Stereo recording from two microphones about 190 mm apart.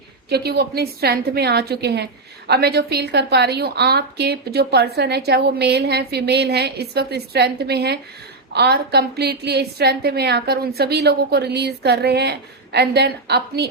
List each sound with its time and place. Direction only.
0.3 s a woman's voice: 60° right (ahead or behind)